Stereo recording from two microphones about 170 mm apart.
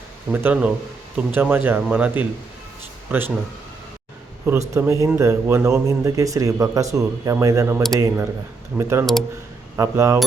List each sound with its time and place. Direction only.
0.3 s speech: 5° right (ahead or behind)
4.7 s speech: 20° right (ahead or behind)